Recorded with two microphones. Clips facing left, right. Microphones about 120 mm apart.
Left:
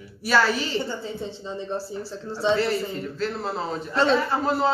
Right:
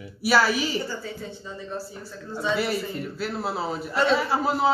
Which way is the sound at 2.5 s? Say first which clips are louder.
Left 2 dB; 10° right (ahead or behind).